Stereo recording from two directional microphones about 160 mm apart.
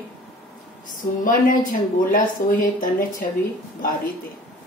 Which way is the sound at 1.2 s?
60° left (ahead or behind).